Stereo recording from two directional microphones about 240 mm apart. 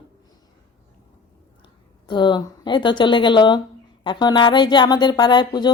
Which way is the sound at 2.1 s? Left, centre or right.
Centre.